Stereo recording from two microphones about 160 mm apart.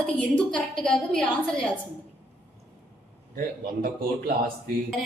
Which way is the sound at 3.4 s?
65° right (ahead or behind).